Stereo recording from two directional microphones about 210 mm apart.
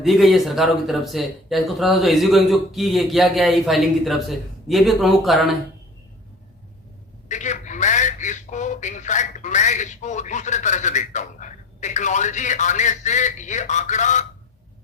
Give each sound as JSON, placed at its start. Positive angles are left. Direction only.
{"t": 0.0, "sound": "speech", "side_deg": 0}
{"t": 7.3, "sound": "speech", "side_deg": 35}